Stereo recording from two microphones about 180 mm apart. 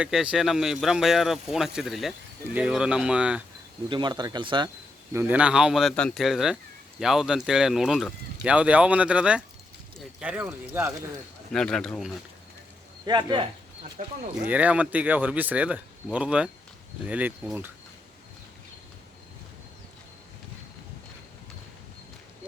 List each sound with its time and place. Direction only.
0.0 s speech: 5° right (ahead or behind)
3.8 s speech: 25° right (ahead or behind)
5.1 s speech: 10° right (ahead or behind)
11.5 s speech: 5° left (ahead or behind)
13.1 s speech: 25° right (ahead or behind)
14.0 s speech: 45° right (ahead or behind)
14.4 s speech: 10° right (ahead or behind)